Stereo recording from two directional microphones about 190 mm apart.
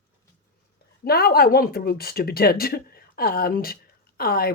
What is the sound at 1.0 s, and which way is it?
Speech, 55° left (ahead or behind).